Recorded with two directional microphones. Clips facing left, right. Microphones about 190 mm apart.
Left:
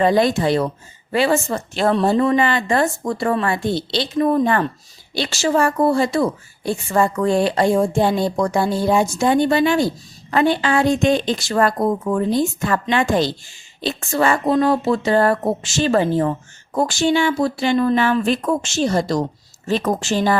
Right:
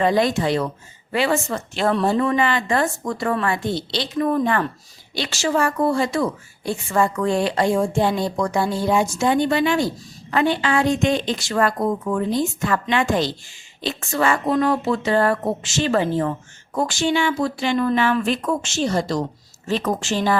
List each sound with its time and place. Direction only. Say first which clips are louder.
0.0 s a woman's voice: left 3 dB; 35° left (ahead or behind)